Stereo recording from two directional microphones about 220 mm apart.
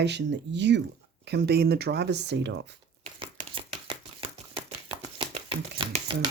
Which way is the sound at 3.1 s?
25° right (ahead or behind).